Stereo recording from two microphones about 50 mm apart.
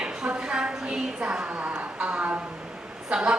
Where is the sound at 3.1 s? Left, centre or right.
Centre.